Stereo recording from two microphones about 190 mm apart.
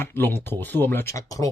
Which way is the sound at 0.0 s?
10° left (ahead or behind).